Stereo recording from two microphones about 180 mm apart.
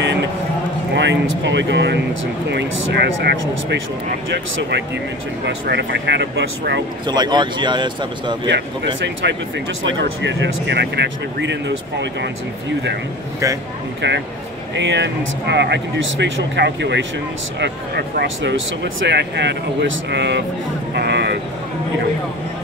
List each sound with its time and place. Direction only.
0.9 s speech: 80° right
7.1 s a man's voice: 25° right (ahead or behind)
8.5 s speech: 75° right (ahead or behind)
14.8 s speech: 80° right
20.9 s vehicle: 65° right (ahead or behind)